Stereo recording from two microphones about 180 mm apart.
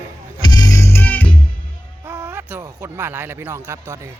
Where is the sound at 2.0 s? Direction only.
10° right (ahead or behind).